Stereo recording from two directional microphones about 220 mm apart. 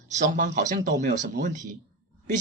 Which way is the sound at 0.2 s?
35° right (ahead or behind).